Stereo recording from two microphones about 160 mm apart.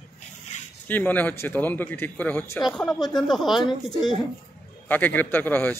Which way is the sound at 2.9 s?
25° left (ahead or behind).